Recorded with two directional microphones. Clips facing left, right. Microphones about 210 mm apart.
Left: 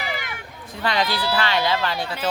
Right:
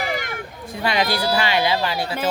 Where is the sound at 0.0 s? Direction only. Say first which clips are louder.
Right 5 dB; 45° right (ahead or behind).